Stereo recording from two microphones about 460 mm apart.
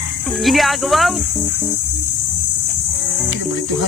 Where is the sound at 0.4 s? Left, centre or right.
Centre.